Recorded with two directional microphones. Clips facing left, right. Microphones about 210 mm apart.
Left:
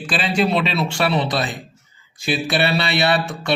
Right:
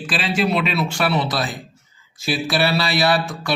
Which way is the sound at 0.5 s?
35° left (ahead or behind).